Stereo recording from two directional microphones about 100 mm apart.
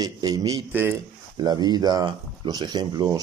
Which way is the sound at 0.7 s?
20° right (ahead or behind).